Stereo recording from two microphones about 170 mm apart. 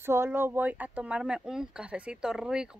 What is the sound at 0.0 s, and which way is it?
Speech, 15° right (ahead or behind).